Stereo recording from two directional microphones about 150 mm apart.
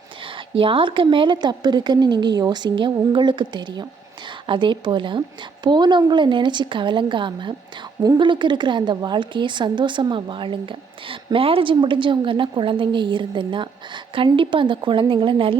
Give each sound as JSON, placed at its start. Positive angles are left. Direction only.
{"t": 0.3, "sound": "a woman's voice", "side_deg": -35}